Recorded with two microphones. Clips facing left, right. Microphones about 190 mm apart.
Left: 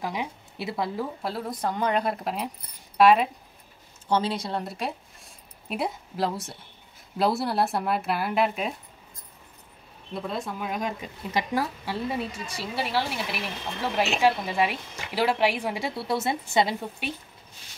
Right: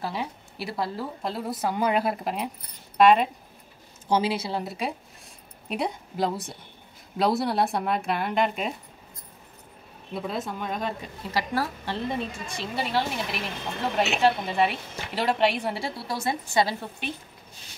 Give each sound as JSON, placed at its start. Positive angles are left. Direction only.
{"t": 0.0, "sound": "speech", "side_deg": 15}
{"t": 1.2, "sound": "speech", "side_deg": 0}
{"t": 10.1, "sound": "speech", "side_deg": 0}
{"t": 10.7, "sound": "a woman's voice", "side_deg": 10}